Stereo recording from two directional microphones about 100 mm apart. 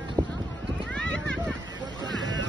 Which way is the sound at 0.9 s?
10° left (ahead or behind).